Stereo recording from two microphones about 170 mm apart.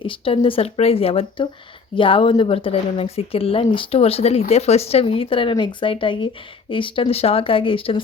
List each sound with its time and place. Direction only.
0.0 s speech: 30° left (ahead or behind)